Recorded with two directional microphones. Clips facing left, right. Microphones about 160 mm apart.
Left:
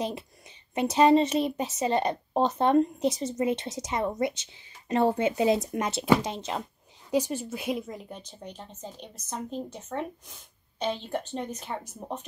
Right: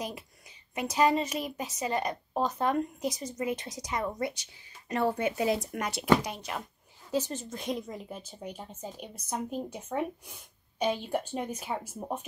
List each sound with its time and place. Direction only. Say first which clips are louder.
0.7 s speech: left 6 dB; 25° left (ahead or behind)
7.1 s speech: left 4 dB; 15° left (ahead or behind); by 12.3 s 10° right (ahead or behind)